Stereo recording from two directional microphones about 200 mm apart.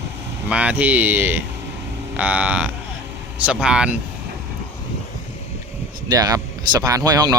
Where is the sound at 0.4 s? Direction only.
5° right (ahead or behind).